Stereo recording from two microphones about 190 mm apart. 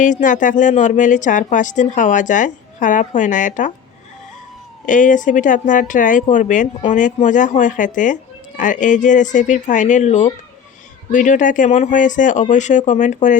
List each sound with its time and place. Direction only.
0.0 s speech: 40° left (ahead or behind)
4.9 s speech: 40° left (ahead or behind)